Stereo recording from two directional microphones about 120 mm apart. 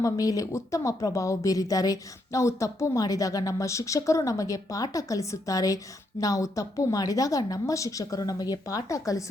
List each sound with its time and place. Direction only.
0.0 s speech: 30° left (ahead or behind)